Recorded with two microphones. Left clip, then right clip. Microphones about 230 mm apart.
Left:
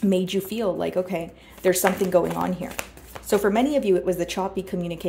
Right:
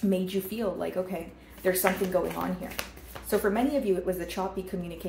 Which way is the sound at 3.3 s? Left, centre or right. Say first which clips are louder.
Left 6 dB; left.